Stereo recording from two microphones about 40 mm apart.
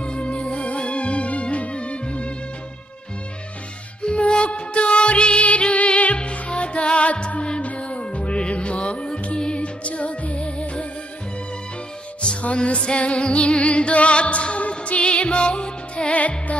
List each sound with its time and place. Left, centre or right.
0.0 s music: left
4.0 s music: left
12.2 s music: left
16.2 s music: left